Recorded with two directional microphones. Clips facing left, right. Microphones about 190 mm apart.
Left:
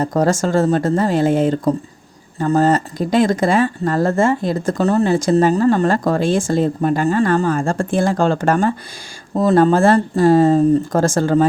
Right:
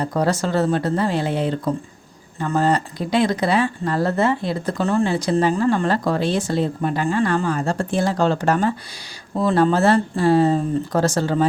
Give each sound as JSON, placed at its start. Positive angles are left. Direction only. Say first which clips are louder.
{"t": 0.0, "sound": "speech", "louder": "left 4 dB", "side_deg": 45}